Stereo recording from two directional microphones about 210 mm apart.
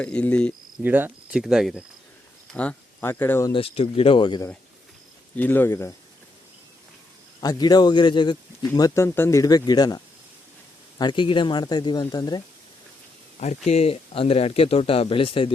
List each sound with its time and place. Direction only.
0.0 s speech: 5° left (ahead or behind)
0.8 s speech: 10° right (ahead or behind); by 3.5 s 10° left (ahead or behind)
3.5 s speech: 25° left (ahead or behind)
5.4 s speech: 10° left (ahead or behind)
7.4 s speech: 20° left (ahead or behind)
13.4 s speech: 30° left (ahead or behind)